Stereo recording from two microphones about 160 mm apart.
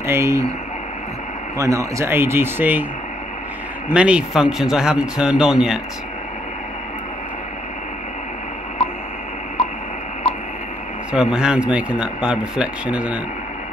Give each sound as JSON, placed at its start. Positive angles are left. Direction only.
{"t": 0.0, "sound": "speech", "side_deg": -15}
{"t": 1.6, "sound": "speech", "side_deg": -20}
{"t": 3.9, "sound": "speech", "side_deg": -5}
{"t": 11.1, "sound": "speech", "side_deg": -5}